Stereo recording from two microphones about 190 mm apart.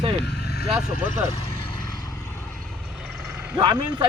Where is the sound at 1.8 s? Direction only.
20° left (ahead or behind).